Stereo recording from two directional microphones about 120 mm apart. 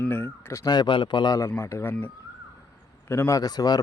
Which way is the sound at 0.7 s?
40° left (ahead or behind).